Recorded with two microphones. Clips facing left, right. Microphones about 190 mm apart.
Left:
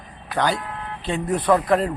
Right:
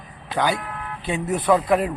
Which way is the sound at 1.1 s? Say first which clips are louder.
Even; 5° right (ahead or behind).